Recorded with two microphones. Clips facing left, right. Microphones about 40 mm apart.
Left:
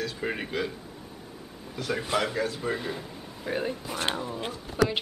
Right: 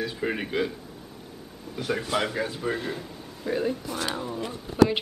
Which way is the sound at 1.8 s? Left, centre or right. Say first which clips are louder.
Right 1 dB; centre.